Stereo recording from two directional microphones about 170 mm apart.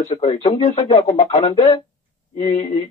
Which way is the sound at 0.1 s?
35° left (ahead or behind).